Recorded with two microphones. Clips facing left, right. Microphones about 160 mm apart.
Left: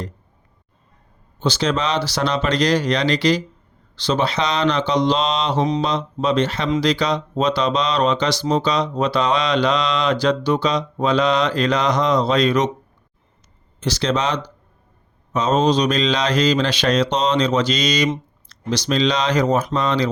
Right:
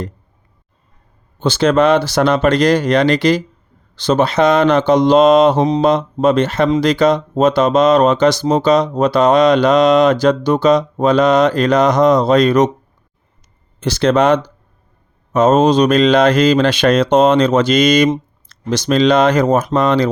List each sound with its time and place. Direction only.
1.4 s speech: 55° right (ahead or behind)
13.7 s speech: 55° right (ahead or behind)